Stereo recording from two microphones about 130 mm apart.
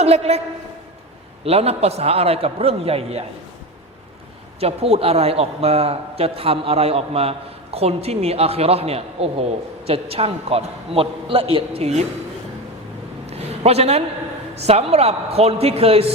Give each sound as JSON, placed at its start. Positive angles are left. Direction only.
{"t": 0.0, "sound": "a man's voice", "side_deg": -55}
{"t": 1.5, "sound": "a man's voice", "side_deg": -50}
{"t": 4.6, "sound": "a man's voice", "side_deg": -50}
{"t": 13.2, "sound": "a sound", "side_deg": -55}
{"t": 14.5, "sound": "a man's voice", "side_deg": -55}